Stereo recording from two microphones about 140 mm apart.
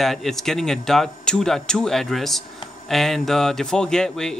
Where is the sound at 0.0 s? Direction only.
Centre (ahead or behind).